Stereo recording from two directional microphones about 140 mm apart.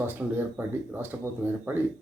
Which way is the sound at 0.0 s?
15° right (ahead or behind).